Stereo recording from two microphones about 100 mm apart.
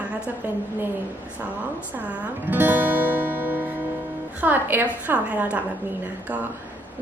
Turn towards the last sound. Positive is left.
turn(degrees=-15)  # may be behind; listen again after turning